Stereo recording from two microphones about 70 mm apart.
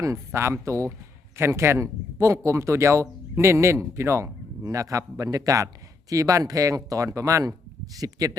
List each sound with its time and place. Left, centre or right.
0.3 s speech: right
4.6 s speech: right